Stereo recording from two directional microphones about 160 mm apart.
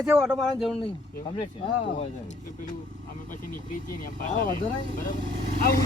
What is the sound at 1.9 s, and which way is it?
Speech, 50° left (ahead or behind).